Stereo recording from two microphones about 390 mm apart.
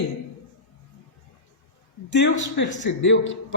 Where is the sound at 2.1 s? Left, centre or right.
Left.